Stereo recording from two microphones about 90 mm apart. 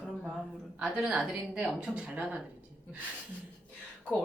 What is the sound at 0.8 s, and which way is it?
A woman's voice, 10° right (ahead or behind).